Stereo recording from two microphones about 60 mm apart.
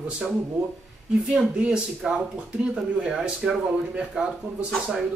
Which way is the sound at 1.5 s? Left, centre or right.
Centre.